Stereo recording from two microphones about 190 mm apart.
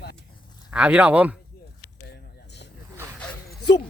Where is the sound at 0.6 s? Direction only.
5° right (ahead or behind).